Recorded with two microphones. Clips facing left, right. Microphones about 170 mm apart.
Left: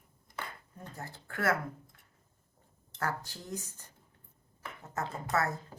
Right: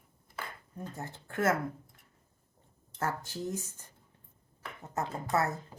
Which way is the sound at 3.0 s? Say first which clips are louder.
Right 3 dB; 20° right (ahead or behind).